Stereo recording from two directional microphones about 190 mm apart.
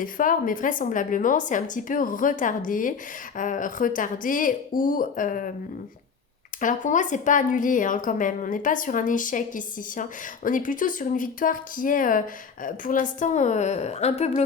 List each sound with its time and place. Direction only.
0.0 s speech: 45° left (ahead or behind)
6.6 s a woman's voice: 40° left (ahead or behind)